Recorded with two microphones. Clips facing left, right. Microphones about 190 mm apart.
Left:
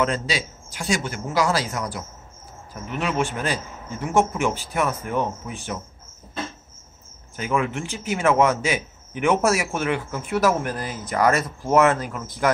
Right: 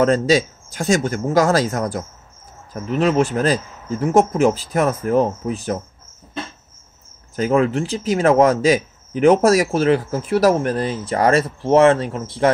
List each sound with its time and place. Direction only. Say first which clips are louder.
0.0 s speech: right 9 dB; 45° right (ahead or behind)
7.3 s speech: right 8 dB; 35° right (ahead or behind)